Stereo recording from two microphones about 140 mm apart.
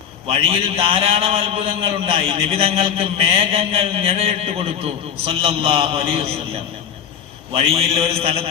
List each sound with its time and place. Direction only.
0.3 s a man's voice: 40° right (ahead or behind)